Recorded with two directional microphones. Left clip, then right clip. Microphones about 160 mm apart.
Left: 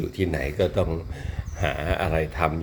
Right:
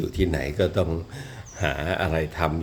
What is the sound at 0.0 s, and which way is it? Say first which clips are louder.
Speech: right 1 dB; 20° right (ahead or behind).